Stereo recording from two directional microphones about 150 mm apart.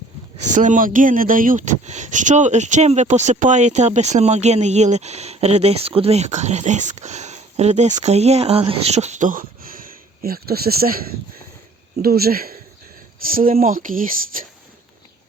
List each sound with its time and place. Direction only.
0.3 s speech: 55° right (ahead or behind); by 12.5 s 80° right
13.2 s speech: 70° right (ahead or behind)